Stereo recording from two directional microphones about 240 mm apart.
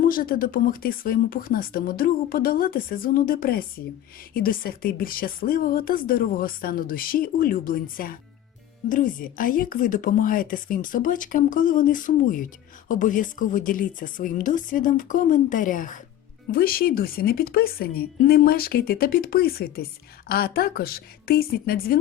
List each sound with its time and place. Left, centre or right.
0.1 s a woman's voice: left